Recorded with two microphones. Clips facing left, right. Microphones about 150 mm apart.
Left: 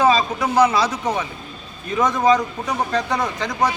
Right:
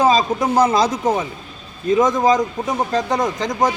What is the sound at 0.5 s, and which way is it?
Speech, 50° right (ahead or behind).